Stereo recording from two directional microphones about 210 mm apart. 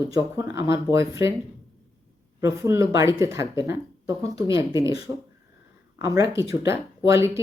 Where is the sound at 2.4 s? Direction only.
15° right (ahead or behind).